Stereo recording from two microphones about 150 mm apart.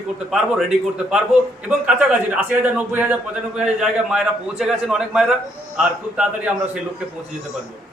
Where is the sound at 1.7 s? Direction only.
5° right (ahead or behind).